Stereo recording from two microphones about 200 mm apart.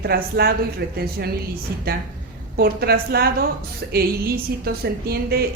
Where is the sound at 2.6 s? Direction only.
50° right (ahead or behind).